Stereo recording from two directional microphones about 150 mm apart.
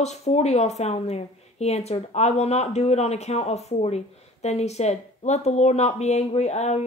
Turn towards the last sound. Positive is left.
turn(degrees=45)  # may be behind; listen again after turning